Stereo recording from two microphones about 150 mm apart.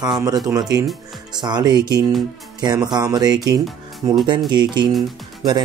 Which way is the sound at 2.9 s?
25° right (ahead or behind).